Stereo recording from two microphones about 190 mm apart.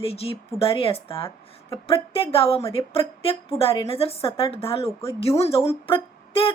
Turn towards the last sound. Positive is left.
turn(degrees=30)  # may be behind; listen again after turning